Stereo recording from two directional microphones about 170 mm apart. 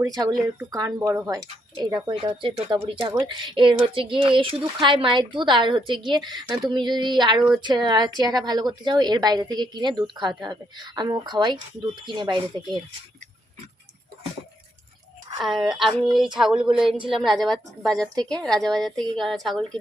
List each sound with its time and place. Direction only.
0.0 s a woman's voice: 20° right (ahead or behind)
16.0 s a woman's voice: centre (ahead or behind)
18.1 s a woman's voice: 25° right (ahead or behind)
18.4 s a woman's voice: 5° left (ahead or behind)